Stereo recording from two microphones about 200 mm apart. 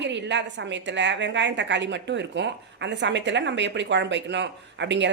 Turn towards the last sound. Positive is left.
turn(degrees=-60)  # may be behind; listen again after turning